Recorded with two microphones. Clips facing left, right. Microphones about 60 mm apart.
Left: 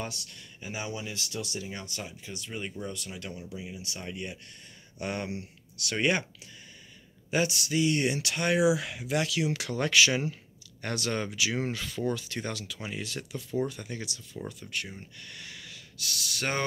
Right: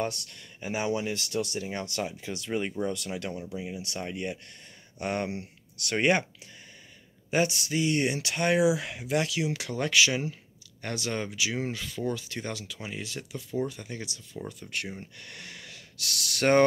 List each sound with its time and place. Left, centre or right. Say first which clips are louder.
0.0 s speech: right 6 dB; right
2.9 s speech: right 6 dB; right
3.7 s speech: right 4 dB; right
4.9 s speech: right 3 dB; right
7.2 s speech: right 2 dB; right
9.5 s speech: even; centre
12.2 s speech: even; centre
15.1 s speech: right 1 dB; right
16.0 s speech: right 5 dB; right